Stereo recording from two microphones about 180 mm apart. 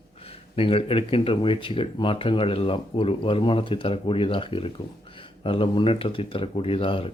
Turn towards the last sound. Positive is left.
turn(degrees=30)  # may be behind; listen again after turning